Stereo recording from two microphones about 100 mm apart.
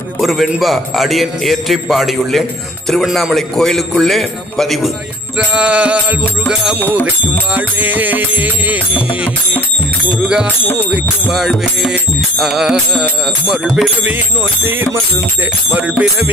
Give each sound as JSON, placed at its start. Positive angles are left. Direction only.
{"t": 0.2, "sound": "a man's voice", "side_deg": 0}
{"t": 5.5, "sound": "music", "side_deg": -10}
{"t": 11.3, "sound": "a man's voice", "side_deg": -5}
{"t": 14.6, "sound": "music", "side_deg": -20}